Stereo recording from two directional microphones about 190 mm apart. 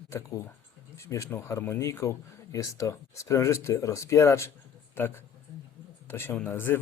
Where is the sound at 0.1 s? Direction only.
15° left (ahead or behind).